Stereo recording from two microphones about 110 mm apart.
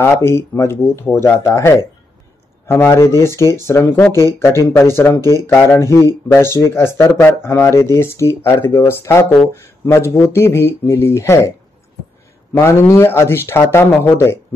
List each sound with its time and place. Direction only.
0.0 s speech: 20° left (ahead or behind)
12.5 s speech: 25° left (ahead or behind)